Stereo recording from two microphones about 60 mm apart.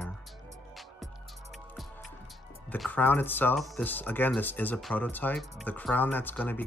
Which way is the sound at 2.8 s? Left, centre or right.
Left.